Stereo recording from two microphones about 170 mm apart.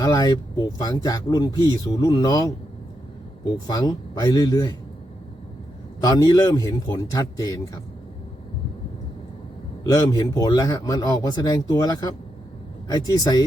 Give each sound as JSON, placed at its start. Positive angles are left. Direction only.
{"t": 0.0, "sound": "speech", "side_deg": 25}
{"t": 3.7, "sound": "speech", "side_deg": 20}
{"t": 6.0, "sound": "speech", "side_deg": 20}
{"t": 9.8, "sound": "speech", "side_deg": 20}